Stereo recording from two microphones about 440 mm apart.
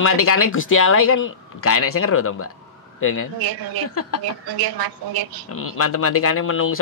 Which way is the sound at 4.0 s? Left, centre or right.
Left.